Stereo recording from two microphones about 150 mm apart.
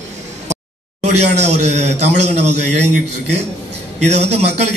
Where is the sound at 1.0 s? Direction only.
45° right (ahead or behind).